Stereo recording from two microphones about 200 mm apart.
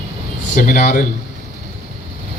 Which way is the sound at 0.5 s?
45° left (ahead or behind).